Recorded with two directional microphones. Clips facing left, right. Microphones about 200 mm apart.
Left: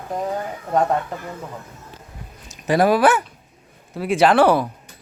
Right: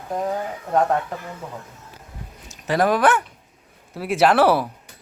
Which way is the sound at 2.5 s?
15° left (ahead or behind).